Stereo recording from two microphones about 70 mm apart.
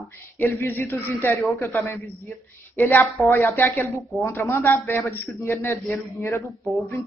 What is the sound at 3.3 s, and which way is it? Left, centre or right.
Speech, left.